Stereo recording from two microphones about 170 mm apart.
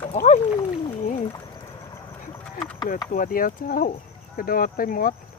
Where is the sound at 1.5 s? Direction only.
20° left (ahead or behind).